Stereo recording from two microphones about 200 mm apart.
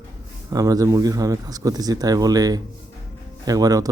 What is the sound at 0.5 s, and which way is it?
Speech, 15° right (ahead or behind).